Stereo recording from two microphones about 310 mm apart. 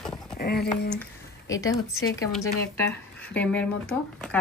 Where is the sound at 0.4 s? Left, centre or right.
Left.